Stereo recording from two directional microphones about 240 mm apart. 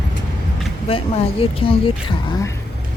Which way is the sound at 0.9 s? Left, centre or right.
Left.